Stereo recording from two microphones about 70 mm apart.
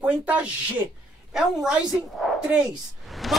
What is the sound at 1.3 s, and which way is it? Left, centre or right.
Speech, centre.